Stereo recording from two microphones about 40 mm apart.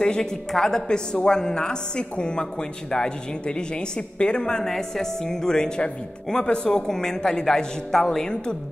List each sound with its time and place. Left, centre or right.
0.0 s a woman's voice: left